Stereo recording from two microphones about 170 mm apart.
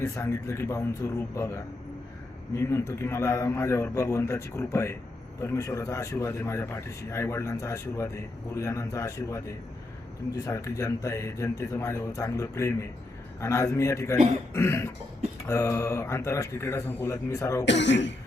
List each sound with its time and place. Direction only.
0.0 s speech: 15° left (ahead or behind)
10.4 s speech: 20° left (ahead or behind)
17.7 s speech: 90° left